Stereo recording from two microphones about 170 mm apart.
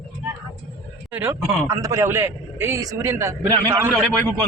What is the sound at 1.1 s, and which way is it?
A man's voice, 15° right (ahead or behind).